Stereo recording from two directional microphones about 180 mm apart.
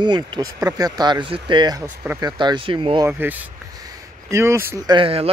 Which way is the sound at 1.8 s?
10° right (ahead or behind).